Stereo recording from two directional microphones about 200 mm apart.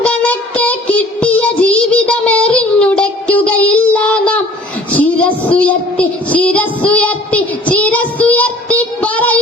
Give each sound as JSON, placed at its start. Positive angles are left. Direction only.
{"t": 0.0, "sound": "child singing", "side_deg": 5}